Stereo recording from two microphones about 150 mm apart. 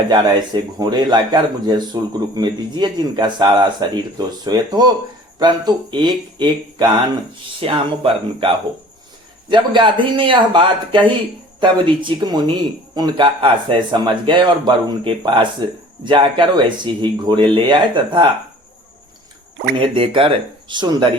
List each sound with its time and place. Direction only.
0.1 s a man's voice: 30° right (ahead or behind)
19.7 s speech: 35° right (ahead or behind)